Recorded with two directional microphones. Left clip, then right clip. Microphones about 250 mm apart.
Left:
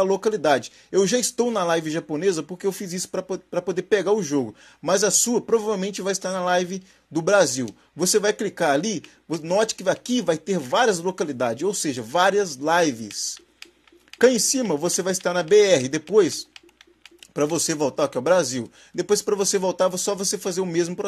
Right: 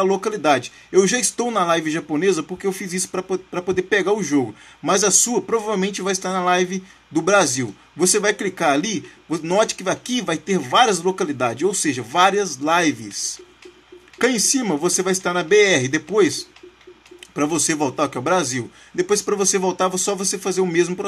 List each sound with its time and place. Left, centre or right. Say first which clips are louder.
0.0 s a man's voice: right 1 dB; centre